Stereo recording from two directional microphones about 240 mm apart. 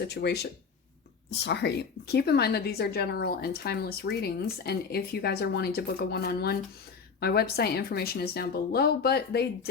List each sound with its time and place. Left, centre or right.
0.0 s a woman's voice: left